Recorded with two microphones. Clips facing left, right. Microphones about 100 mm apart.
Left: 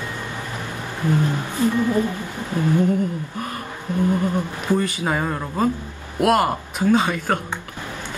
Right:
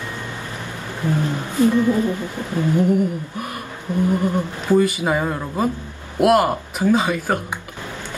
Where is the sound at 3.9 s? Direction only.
20° right (ahead or behind).